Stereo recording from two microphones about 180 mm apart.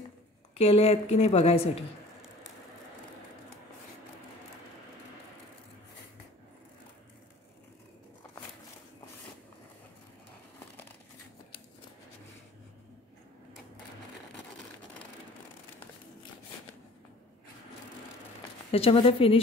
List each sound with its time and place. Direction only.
0.6 s a woman's voice: 35° left (ahead or behind)
18.7 s a woman's voice: 30° left (ahead or behind)